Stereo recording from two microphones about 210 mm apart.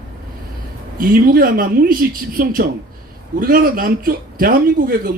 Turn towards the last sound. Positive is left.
turn(degrees=-45)  # may be behind; listen again after turning